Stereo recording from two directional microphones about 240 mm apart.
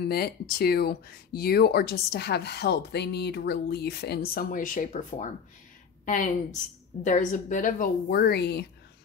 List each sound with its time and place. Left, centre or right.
0.0 s a woman's voice: left